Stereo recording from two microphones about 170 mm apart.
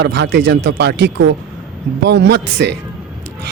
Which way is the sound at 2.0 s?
90° right.